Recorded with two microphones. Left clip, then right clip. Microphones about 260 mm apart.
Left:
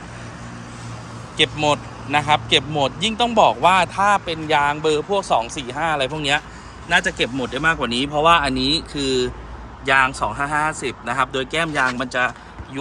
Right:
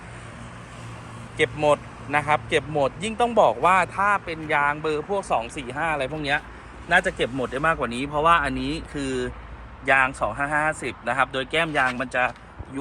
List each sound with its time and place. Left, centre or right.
1.4 s speech: centre
8.5 s speech: centre
9.0 s speech: centre